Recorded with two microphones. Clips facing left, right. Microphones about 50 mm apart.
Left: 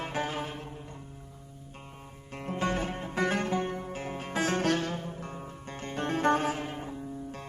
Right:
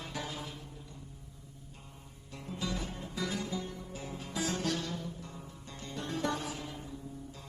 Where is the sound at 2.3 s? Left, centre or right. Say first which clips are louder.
Left 8 dB; left.